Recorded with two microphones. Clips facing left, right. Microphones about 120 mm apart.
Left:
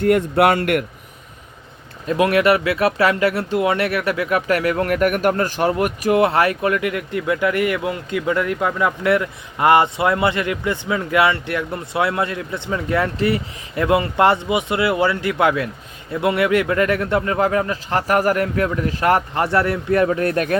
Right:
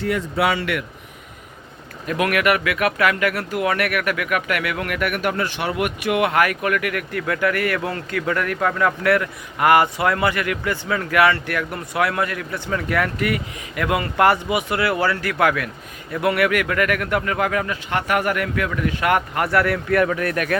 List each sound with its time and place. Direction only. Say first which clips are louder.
0.0 s speech: left 6 dB; 55° left (ahead or behind)
2.0 s speech: left 4 dB; 30° left (ahead or behind)